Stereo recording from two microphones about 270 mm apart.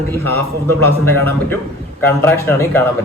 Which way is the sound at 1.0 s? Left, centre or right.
Centre.